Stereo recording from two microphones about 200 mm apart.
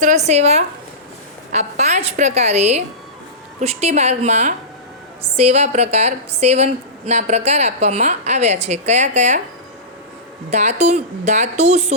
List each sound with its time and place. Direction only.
0.0 s a woman's voice: 35° right (ahead or behind)
10.5 s a woman's voice: 35° right (ahead or behind)